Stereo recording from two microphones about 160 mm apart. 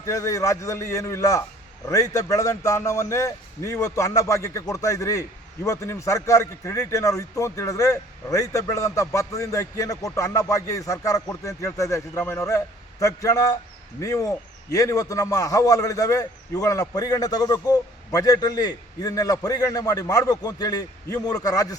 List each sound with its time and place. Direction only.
0.0 s a man's voice: 20° left (ahead or behind)